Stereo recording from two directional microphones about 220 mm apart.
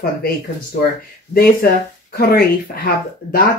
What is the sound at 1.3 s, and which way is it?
Speech, 45° left (ahead or behind).